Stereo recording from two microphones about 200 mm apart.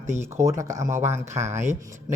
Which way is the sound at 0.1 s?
15° right (ahead or behind).